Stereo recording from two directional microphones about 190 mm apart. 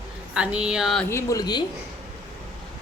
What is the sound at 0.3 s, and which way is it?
Speech, 5° right (ahead or behind).